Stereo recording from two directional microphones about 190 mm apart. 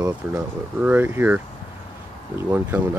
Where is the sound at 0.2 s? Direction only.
5° right (ahead or behind).